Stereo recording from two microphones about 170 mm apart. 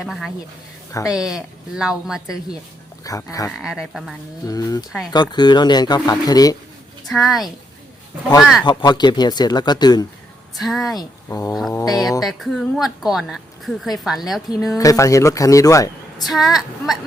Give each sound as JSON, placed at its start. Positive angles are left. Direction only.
{"t": 0.0, "sound": "a woman's voice", "side_deg": 0}
{"t": 3.0, "sound": "speech", "side_deg": 20}
{"t": 3.6, "sound": "a woman's voice", "side_deg": 0}
{"t": 4.4, "sound": "speech", "side_deg": 20}
{"t": 7.1, "sound": "a woman's voice", "side_deg": 0}
{"t": 8.6, "sound": "speech", "side_deg": 25}
{"t": 10.6, "sound": "a woman's voice", "side_deg": 0}
{"t": 10.9, "sound": "speech", "side_deg": 20}
{"t": 12.2, "sound": "a woman's voice", "side_deg": 0}
{"t": 14.8, "sound": "speech", "side_deg": 20}
{"t": 16.2, "sound": "a woman's voice", "side_deg": 0}